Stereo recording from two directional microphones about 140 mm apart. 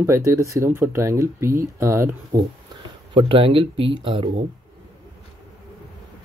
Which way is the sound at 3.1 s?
40° right (ahead or behind).